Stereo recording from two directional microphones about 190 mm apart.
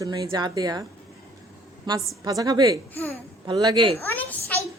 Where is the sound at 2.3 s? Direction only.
20° right (ahead or behind).